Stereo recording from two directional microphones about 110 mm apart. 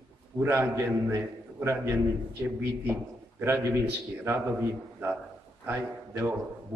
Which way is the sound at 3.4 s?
20° right (ahead or behind).